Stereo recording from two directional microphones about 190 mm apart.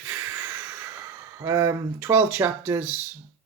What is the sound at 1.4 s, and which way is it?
Speech, 15° right (ahead or behind).